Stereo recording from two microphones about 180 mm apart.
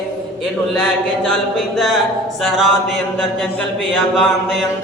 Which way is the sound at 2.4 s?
Centre (ahead or behind).